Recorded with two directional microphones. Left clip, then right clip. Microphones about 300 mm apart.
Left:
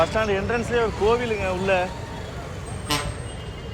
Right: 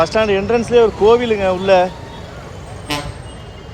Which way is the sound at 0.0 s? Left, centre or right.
Centre.